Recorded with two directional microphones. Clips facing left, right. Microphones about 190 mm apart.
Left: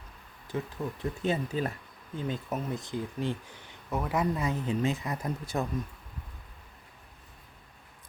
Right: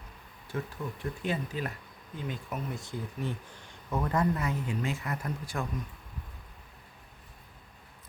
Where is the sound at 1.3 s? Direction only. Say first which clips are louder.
Left 4 dB; 30° left (ahead or behind).